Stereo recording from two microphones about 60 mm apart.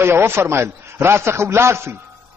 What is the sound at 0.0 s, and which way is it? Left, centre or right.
A man's voice, right.